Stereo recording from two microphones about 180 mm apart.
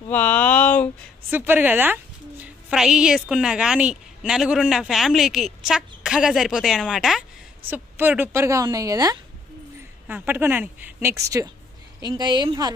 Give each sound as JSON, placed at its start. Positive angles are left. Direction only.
{"t": 0.1, "sound": "a sound", "side_deg": 10}
{"t": 1.3, "sound": "a woman's voice", "side_deg": -10}
{"t": 10.0, "sound": "a woman's voice", "side_deg": -10}